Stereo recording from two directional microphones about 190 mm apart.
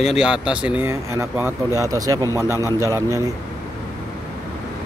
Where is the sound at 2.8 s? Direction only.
15° right (ahead or behind).